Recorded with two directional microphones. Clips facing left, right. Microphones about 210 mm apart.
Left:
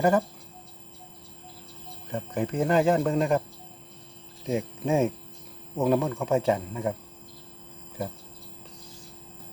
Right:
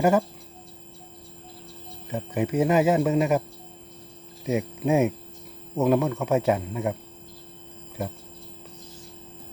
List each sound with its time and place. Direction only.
0.0 s speech: 10° right (ahead or behind)
2.0 s speech: 5° right (ahead or behind)
4.4 s speech: 5° right (ahead or behind)